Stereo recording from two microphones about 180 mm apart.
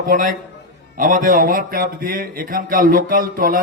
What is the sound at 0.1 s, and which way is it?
Speech, 50° right (ahead or behind).